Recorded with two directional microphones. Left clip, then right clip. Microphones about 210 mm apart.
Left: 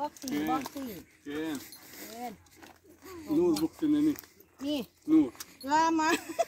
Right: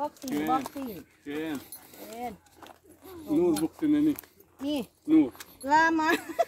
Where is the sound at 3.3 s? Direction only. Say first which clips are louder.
Right 2 dB; 15° right (ahead or behind).